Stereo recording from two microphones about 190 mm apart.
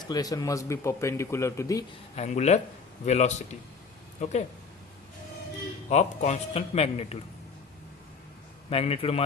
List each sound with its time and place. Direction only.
0.0 s speech: 20° left (ahead or behind)
2.1 s a man's voice: 35° left (ahead or behind)
5.9 s a man's voice: 40° left (ahead or behind)
8.7 s a man's voice: 30° left (ahead or behind)